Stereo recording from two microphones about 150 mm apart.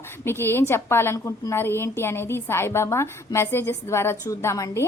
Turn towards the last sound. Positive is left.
turn(degrees=20)  # may be behind; listen again after turning